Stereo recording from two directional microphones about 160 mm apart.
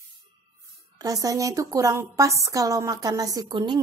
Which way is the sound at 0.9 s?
20° right (ahead or behind).